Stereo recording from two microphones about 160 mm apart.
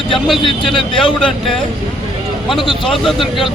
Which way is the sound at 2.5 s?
30° left (ahead or behind).